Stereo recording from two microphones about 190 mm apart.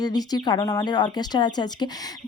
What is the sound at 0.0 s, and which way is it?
Speech, 20° left (ahead or behind).